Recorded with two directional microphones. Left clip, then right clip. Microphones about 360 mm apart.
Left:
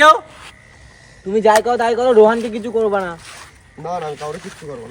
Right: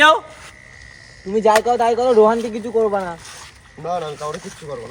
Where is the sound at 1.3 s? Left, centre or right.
Left.